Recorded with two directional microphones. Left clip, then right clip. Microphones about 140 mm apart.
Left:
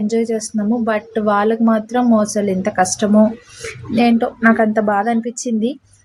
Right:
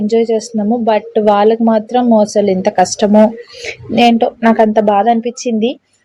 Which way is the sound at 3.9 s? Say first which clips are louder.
Right 6 dB; 20° right (ahead or behind).